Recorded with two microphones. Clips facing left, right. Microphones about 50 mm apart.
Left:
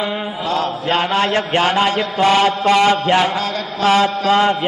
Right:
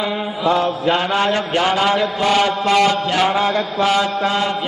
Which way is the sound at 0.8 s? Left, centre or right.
Left.